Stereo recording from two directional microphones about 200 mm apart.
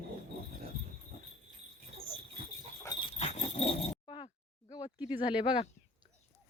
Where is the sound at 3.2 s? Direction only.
30° left (ahead or behind).